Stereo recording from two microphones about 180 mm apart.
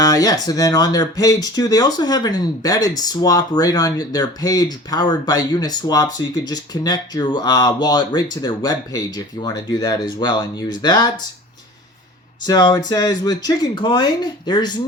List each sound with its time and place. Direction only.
0.0 s speech: 20° left (ahead or behind)
12.5 s speech: 20° left (ahead or behind)